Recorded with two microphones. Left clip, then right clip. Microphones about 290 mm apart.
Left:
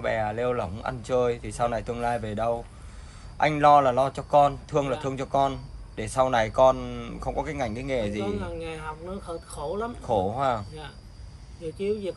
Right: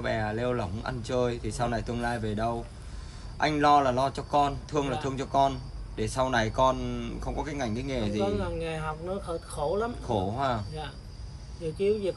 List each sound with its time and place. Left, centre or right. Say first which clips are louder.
0.0 s a man's voice: left 3 dB; left
8.2 s speech: right 2 dB; centre
10.0 s a man's voice: left 9 dB; left
11.6 s speech: right 2 dB; centre